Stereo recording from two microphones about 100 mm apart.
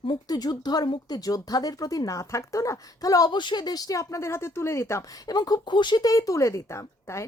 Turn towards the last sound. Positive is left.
turn(degrees=30)  # may be behind; listen again after turning